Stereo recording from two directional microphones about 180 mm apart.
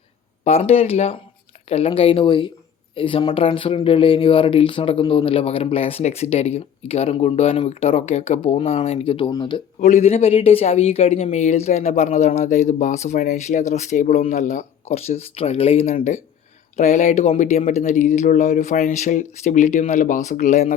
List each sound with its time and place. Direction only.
0.4 s speech: 35° left (ahead or behind)
9.8 s speech: 40° left (ahead or behind)